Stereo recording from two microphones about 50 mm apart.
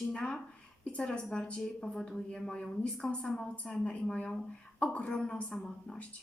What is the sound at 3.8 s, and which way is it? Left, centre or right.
A woman's voice, centre.